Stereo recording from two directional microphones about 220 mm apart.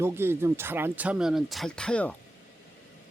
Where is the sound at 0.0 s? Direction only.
10° right (ahead or behind); by 2.1 s 5° left (ahead or behind).